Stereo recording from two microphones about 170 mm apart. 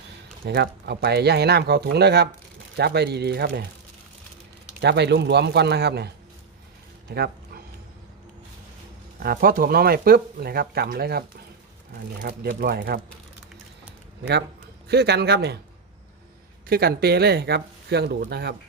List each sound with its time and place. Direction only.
0.4 s speech: 75° right (ahead or behind)
4.8 s a man's voice: 80° right
7.1 s dog: 65° right (ahead or behind)
9.2 s speech: 60° right (ahead or behind)
12.3 s speech: 60° right (ahead or behind)
14.8 s speech: 75° right (ahead or behind)
16.6 s speech: 65° right (ahead or behind)